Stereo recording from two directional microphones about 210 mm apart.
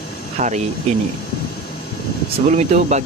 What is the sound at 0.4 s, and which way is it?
Speech, 40° right (ahead or behind).